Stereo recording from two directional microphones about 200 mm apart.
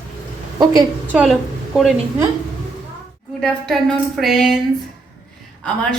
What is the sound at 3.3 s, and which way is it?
A woman's voice, centre (ahead or behind).